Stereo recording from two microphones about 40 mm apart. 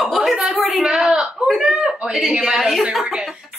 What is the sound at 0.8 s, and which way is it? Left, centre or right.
Speech, centre.